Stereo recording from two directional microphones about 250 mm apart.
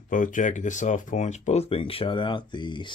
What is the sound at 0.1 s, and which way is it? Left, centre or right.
Speech, left.